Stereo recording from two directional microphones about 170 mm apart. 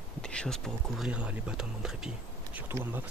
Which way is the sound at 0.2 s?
5° left (ahead or behind).